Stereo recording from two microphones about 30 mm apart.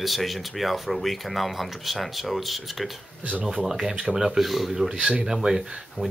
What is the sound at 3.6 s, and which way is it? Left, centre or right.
Speech, centre.